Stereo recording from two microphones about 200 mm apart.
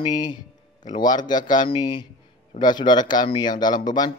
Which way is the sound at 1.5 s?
20° left (ahead or behind).